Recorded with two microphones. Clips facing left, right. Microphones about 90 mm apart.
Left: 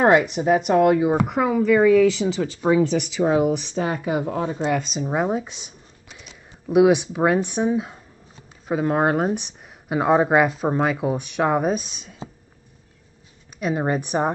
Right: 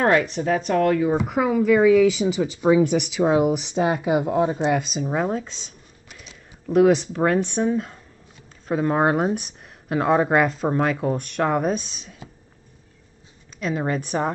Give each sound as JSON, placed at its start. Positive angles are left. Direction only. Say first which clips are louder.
{"t": 0.0, "sound": "speech", "louder": "left 3 dB", "side_deg": 15}
{"t": 1.2, "sound": "speech", "louder": "even", "side_deg": 0}
{"t": 4.8, "sound": "speech", "louder": "even", "side_deg": 0}
{"t": 5.2, "sound": "speech", "louder": "left 2 dB", "side_deg": 10}
{"t": 6.0, "sound": "a sound", "louder": "even", "side_deg": 0}
{"t": 6.7, "sound": "speech", "louder": "left 1 dB", "side_deg": 10}
{"t": 13.6, "sound": "speech", "louder": "left 2 dB", "side_deg": 15}